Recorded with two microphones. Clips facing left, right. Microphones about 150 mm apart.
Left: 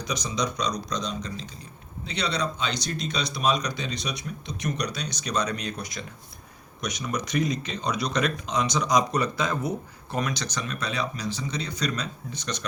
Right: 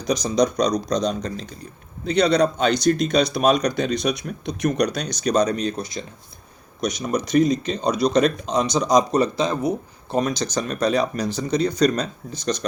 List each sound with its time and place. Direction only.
0.1 s speech: 40° right (ahead or behind)